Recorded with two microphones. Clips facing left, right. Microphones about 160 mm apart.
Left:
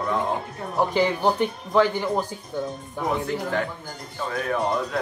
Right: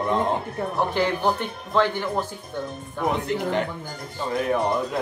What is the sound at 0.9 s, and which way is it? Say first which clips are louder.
Speech: left 3 dB; 15° left (ahead or behind).